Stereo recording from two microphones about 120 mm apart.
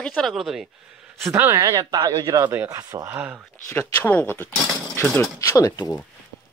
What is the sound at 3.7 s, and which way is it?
Speech, 15° left (ahead or behind).